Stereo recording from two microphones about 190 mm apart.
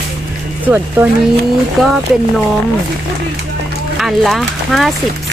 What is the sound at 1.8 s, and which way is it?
Speech, centre (ahead or behind).